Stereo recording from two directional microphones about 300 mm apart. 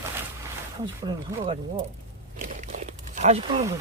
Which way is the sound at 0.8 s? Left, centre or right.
Centre.